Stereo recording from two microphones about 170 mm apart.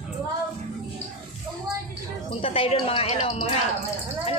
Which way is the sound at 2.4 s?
35° left (ahead or behind).